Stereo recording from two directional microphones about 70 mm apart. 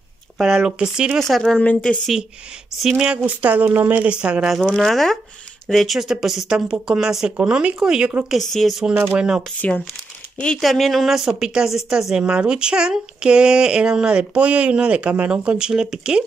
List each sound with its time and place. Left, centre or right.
0.6 s a woman's voice: centre
1.2 s speech: centre
2.8 s a woman's voice: centre
3.3 s speech: right
4.7 s a woman's voice: centre
8.3 s speech: centre
9.1 s a woman's voice: centre
9.6 s speech: centre
10.6 s a woman's voice: centre